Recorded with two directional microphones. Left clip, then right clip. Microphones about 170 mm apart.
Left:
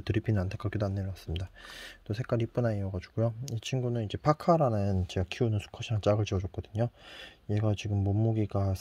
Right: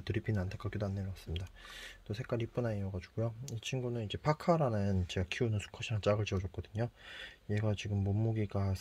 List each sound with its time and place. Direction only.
0.0 s speech: 50° left (ahead or behind)